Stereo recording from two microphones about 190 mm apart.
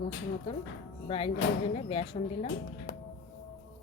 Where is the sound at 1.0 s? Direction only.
25° left (ahead or behind).